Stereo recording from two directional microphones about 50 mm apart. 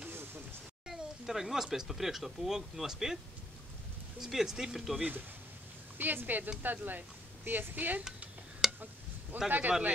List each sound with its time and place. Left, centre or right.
0.8 s speech: centre
4.2 s speech: centre
5.9 s speech: right
8.6 s a sound: centre
9.5 s speech: right